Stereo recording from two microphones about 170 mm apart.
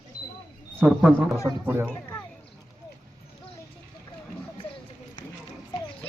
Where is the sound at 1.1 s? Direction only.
10° right (ahead or behind).